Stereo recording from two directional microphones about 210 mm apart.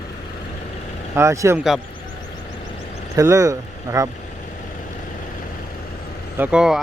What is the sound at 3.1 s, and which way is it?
Speech, 15° right (ahead or behind).